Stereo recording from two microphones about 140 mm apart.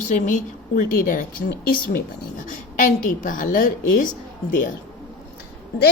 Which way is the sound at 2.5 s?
70° left (ahead or behind).